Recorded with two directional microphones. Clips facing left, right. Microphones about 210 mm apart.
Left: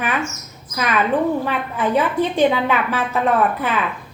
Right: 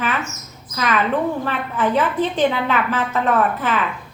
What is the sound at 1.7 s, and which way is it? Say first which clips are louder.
Speech: even; 10° left (ahead or behind).